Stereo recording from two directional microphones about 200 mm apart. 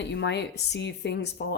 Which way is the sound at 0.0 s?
60° left (ahead or behind).